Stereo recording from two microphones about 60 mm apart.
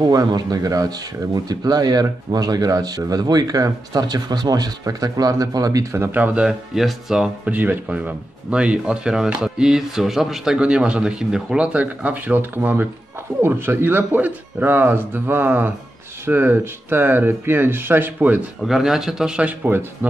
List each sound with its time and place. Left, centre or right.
0.0 s speech: right
6.1 s speech: right
6.4 s speech: centre
7.4 s speech: right
18.7 s speech: centre
19.7 s speech: right